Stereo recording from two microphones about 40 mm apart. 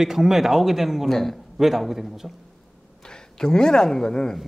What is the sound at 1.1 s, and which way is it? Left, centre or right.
Speech, centre.